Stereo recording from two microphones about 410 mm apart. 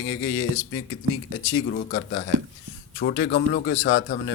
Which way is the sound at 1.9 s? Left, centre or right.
Left.